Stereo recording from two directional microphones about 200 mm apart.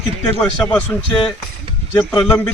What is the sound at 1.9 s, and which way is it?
Speech, 10° left (ahead or behind).